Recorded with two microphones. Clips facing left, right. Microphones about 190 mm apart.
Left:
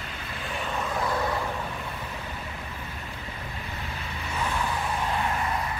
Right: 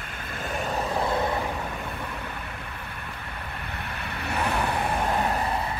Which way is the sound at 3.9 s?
65° right (ahead or behind).